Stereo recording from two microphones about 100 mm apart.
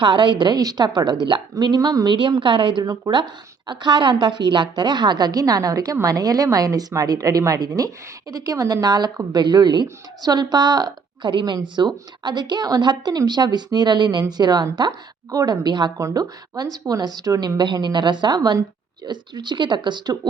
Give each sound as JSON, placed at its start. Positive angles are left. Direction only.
{"t": 0.0, "sound": "a woman's voice", "side_deg": -55}
{"t": 2.1, "sound": "a woman's voice", "side_deg": -55}
{"t": 2.8, "sound": "a woman's voice", "side_deg": -40}
{"t": 16.0, "sound": "a woman's voice", "side_deg": -30}
{"t": 17.6, "sound": "a woman's voice", "side_deg": -50}